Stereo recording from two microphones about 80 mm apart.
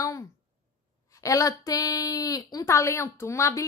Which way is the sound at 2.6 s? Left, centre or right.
Left.